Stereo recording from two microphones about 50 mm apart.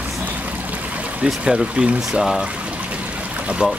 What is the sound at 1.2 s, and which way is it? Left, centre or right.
Speech, centre.